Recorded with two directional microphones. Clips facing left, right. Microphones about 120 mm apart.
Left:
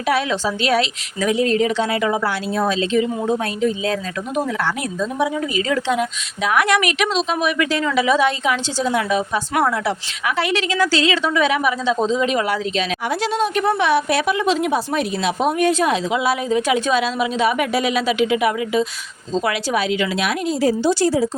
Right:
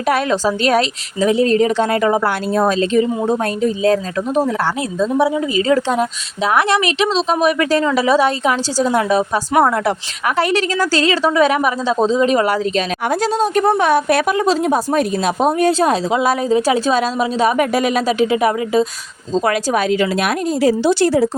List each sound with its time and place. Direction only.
0.0 s speech: 45° right (ahead or behind)
1.2 s a woman's voice: 35° right (ahead or behind)
20.6 s a woman's voice: 70° right (ahead or behind)